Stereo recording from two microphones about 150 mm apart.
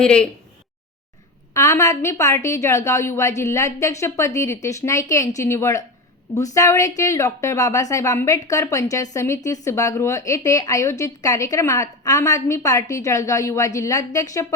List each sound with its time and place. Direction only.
0.0 s speech: 5° left (ahead or behind)
1.5 s a woman's voice: 20° left (ahead or behind)